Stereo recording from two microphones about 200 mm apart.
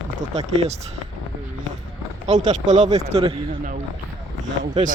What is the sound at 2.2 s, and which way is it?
Speech, 35° right (ahead or behind).